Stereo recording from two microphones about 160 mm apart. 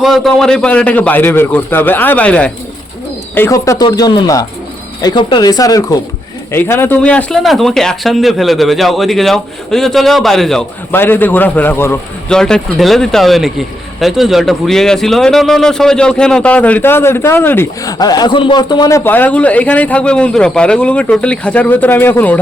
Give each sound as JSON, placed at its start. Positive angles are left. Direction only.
{"t": 0.0, "sound": "speech", "side_deg": 0}
{"t": 10.9, "sound": "speech", "side_deg": 15}